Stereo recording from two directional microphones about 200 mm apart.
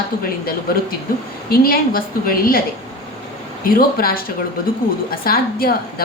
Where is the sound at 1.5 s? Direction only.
45° left (ahead or behind).